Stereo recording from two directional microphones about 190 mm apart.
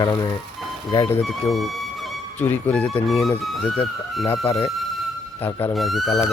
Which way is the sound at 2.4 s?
10° left (ahead or behind).